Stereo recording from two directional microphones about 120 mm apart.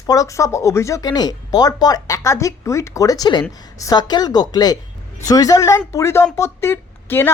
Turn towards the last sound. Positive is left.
turn(degrees=20)  # may be behind; listen again after turning